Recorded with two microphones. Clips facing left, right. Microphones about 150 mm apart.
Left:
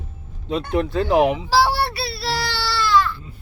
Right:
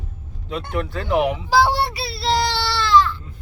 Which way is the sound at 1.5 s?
20° right (ahead or behind).